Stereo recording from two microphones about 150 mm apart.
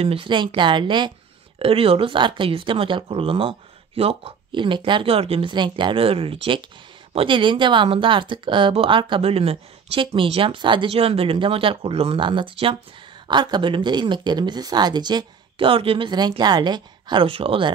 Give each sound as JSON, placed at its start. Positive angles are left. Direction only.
{"t": 0.0, "sound": "speech", "side_deg": -40}